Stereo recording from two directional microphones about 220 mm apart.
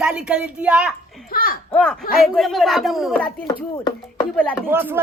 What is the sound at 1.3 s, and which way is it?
Speech, 40° left (ahead or behind).